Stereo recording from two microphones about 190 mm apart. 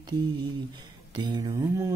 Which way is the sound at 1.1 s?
25° right (ahead or behind).